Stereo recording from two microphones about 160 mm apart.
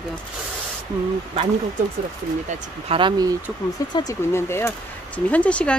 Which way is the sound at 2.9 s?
30° right (ahead or behind).